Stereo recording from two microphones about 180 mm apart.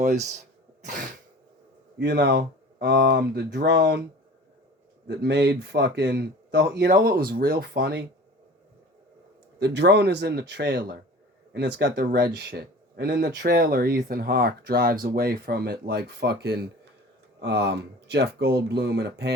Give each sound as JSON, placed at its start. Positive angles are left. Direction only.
{"t": 0.0, "sound": "speech", "side_deg": -40}
{"t": 0.8, "sound": "cough", "side_deg": -45}
{"t": 2.0, "sound": "speech", "side_deg": -70}
{"t": 5.0, "sound": "speech", "side_deg": -65}
{"t": 6.8, "sound": "speech", "side_deg": -55}
{"t": 9.6, "sound": "speech", "side_deg": -70}